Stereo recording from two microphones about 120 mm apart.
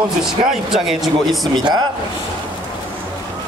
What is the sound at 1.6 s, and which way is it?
Speech, 35° right (ahead or behind).